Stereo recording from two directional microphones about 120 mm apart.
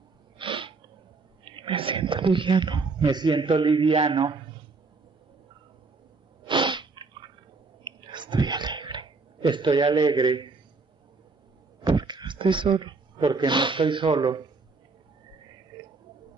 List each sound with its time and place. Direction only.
0.4 s sneeze: 45° right (ahead or behind)
1.4 s speech: 45° right (ahead or behind)
6.4 s sneeze: 40° right (ahead or behind)
8.0 s whispering: 40° right (ahead or behind)
11.8 s speech: 35° right (ahead or behind)
15.7 s a sound: 35° right (ahead or behind)